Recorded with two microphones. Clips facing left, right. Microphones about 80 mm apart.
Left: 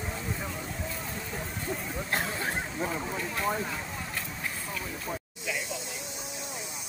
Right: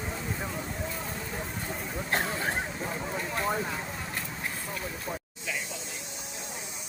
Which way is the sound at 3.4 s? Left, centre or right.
Centre.